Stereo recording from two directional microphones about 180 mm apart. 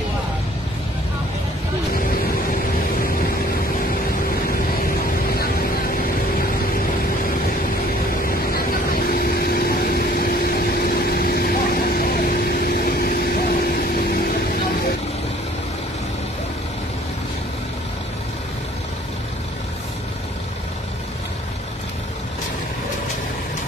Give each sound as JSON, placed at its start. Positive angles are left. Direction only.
{"t": 8.9, "sound": "vehicle", "side_deg": 55}